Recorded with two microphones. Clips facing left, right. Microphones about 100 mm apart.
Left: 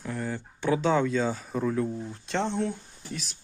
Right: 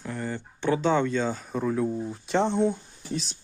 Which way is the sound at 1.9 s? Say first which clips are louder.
Right 5 dB; 15° right (ahead or behind).